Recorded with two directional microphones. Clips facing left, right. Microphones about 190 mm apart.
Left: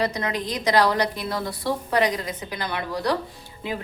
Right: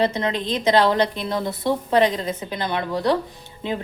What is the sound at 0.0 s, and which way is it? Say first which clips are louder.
A woman's voice: right 4 dB; 25° right (ahead or behind).